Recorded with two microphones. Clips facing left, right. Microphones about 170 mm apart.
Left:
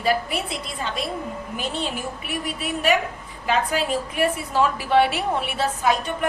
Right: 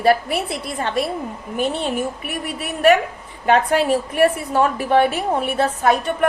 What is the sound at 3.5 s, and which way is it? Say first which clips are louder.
A woman's voice: right 6 dB; 55° right (ahead or behind).